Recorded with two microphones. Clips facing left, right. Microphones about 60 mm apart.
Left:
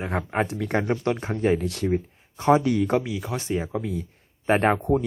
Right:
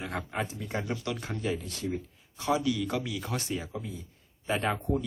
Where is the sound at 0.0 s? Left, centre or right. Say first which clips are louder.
Left 7 dB; left.